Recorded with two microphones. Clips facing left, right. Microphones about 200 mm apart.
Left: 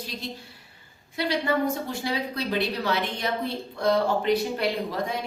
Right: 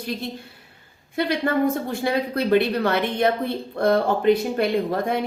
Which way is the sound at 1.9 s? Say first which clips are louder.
Right 6 dB; 55° right (ahead or behind).